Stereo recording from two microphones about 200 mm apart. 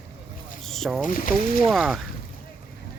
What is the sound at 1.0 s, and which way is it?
Speech, 40° left (ahead or behind).